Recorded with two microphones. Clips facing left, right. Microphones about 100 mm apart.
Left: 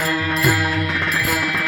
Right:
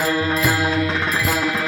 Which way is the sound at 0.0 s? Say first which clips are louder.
Right 1 dB; 15° right (ahead or behind).